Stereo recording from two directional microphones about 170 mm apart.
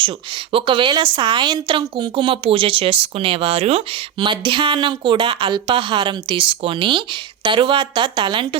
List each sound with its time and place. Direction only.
0.5 s a woman's voice: 30° right (ahead or behind)